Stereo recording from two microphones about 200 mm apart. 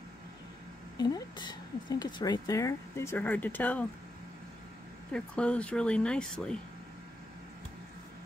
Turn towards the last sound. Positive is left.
turn(degrees=5)  # may be behind; listen again after turning